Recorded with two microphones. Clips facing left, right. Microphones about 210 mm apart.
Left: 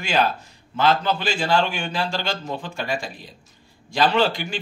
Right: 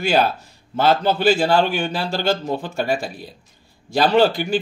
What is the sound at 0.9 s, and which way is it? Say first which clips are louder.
A man's voice: right 6 dB; 40° right (ahead or behind).